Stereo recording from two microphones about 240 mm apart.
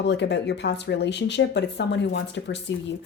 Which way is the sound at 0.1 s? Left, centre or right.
Left.